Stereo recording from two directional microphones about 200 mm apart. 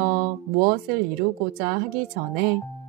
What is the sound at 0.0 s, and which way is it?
Music, 45° right (ahead or behind).